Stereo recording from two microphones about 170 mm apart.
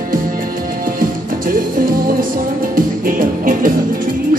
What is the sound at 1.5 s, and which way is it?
Music, 55° right (ahead or behind).